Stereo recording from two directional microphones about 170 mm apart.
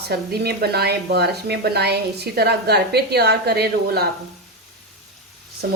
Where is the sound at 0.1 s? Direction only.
70° right (ahead or behind).